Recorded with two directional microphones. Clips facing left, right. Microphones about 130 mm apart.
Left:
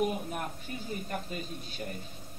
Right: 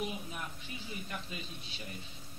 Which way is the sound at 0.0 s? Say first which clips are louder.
Left 8 dB; 50° left (ahead or behind).